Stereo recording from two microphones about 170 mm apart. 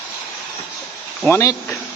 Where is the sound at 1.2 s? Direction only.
15° left (ahead or behind).